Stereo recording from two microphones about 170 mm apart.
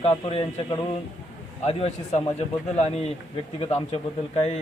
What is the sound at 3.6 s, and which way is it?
Speech, 35° left (ahead or behind).